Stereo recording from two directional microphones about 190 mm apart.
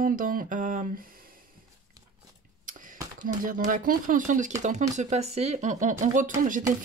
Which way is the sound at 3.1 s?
45° right (ahead or behind).